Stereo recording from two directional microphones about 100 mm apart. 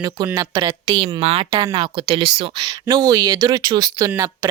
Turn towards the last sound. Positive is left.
turn(degrees=-25)  # may be behind; listen again after turning